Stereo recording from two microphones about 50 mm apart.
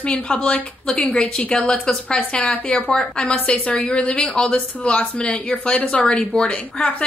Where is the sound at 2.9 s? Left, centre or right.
Centre.